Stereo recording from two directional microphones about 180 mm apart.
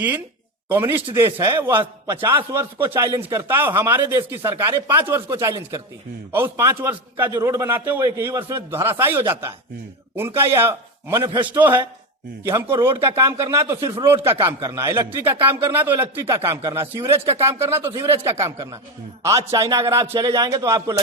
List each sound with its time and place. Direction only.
0.7 s a man's voice: 10° right (ahead or behind)